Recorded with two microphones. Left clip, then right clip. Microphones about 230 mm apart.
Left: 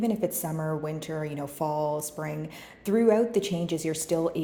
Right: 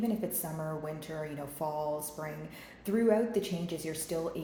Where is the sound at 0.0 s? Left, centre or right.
Left.